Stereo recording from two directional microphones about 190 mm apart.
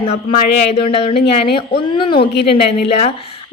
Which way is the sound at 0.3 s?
35° left (ahead or behind).